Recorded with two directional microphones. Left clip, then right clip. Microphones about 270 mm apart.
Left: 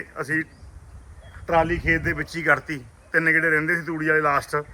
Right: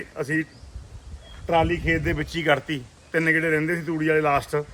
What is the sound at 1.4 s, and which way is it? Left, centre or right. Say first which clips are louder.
A man's voice: left 1 dB; centre.